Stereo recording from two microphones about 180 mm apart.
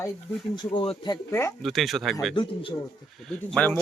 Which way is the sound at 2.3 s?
30° left (ahead or behind).